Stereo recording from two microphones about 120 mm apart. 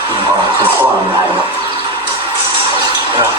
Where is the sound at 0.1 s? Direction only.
40° right (ahead or behind).